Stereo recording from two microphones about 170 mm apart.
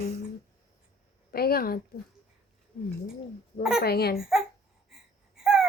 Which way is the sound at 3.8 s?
65° left (ahead or behind).